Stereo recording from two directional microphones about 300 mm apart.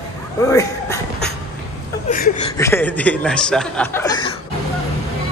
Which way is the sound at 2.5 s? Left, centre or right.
Centre.